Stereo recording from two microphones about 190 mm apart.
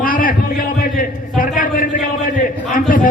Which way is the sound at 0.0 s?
45° left (ahead or behind).